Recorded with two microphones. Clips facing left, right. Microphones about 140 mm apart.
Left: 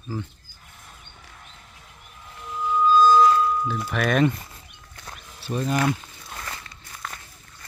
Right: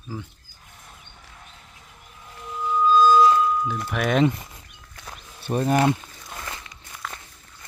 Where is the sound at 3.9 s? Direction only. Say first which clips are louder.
Right 1 dB; 20° right (ahead or behind).